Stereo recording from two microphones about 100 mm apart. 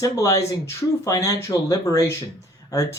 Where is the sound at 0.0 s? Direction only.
35° left (ahead or behind).